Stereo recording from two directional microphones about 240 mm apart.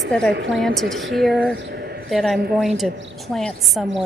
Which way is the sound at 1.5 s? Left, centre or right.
Right.